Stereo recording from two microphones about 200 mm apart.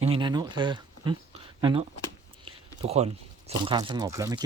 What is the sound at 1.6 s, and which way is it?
Speech, 25° right (ahead or behind).